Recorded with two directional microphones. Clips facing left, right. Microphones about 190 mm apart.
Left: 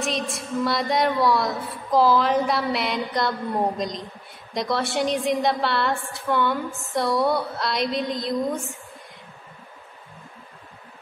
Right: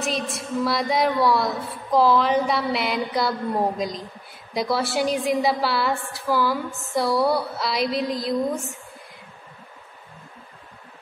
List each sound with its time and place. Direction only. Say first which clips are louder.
0.0 s a woman's voice: even; centre (ahead or behind)